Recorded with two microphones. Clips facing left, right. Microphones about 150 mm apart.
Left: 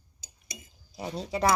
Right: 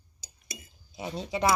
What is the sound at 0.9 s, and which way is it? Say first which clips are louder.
Speech: even; centre (ahead or behind).